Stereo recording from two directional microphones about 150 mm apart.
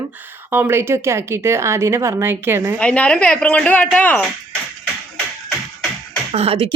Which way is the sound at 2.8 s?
10° left (ahead or behind).